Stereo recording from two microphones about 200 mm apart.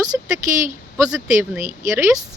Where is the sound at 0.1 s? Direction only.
10° right (ahead or behind).